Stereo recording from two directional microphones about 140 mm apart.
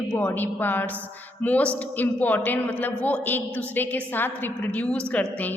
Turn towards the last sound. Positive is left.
turn(degrees=10)  # may be behind; listen again after turning